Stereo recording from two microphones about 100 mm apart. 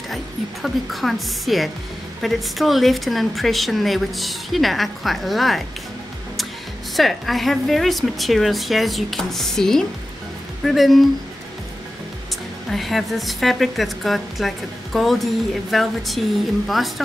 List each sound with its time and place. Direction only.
0.1 s a woman's voice: centre (ahead or behind)
7.0 s a woman's voice: centre (ahead or behind)
12.7 s a woman's voice: centre (ahead or behind)